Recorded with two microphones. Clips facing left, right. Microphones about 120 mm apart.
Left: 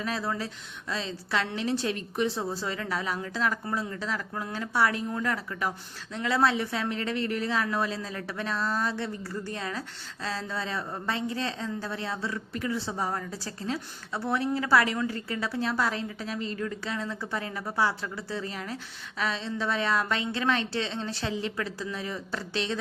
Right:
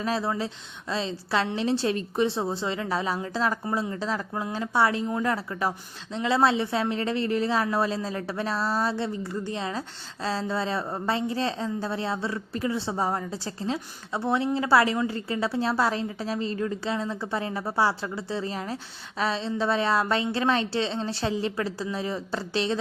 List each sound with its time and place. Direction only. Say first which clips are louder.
0.0 s a woman's voice: right 4 dB; 30° right (ahead or behind)
9.2 s a woman's voice: right 4 dB; 20° right (ahead or behind)